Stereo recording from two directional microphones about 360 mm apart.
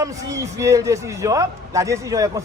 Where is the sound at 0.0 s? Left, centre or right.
Centre.